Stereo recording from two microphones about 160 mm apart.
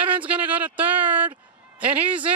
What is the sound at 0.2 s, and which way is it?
Speech, 10° right (ahead or behind).